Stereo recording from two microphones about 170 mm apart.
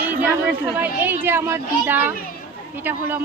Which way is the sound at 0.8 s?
10° right (ahead or behind).